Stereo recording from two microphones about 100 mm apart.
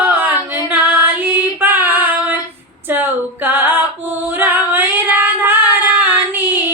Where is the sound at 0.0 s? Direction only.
20° right (ahead or behind).